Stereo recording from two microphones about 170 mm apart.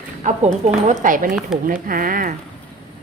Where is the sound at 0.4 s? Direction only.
50° right (ahead or behind).